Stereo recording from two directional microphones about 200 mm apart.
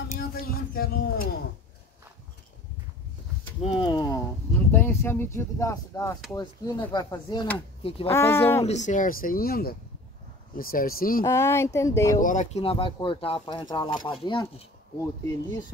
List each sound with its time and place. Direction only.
0.1 s a sound: 45° left (ahead or behind)
3.6 s a sound: 25° left (ahead or behind)
4.7 s speech: 10° left (ahead or behind); by 8.1 s 30° left (ahead or behind)
8.1 s speech: 10° left (ahead or behind)
8.6 s speech: 35° left (ahead or behind)
11.2 s speech: 15° left (ahead or behind)
12.2 s speech: 40° left (ahead or behind); by 14.7 s 25° left (ahead or behind)